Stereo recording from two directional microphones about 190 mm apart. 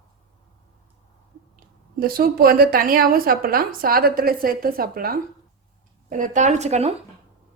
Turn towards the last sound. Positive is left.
turn(degrees=-35)  # may be behind; listen again after turning